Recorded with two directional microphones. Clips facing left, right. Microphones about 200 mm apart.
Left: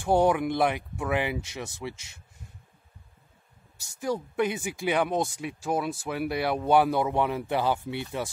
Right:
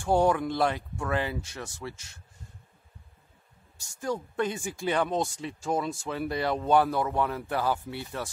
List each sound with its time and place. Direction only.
0.0 s speech: 15° left (ahead or behind)
4.0 s speech: 10° left (ahead or behind)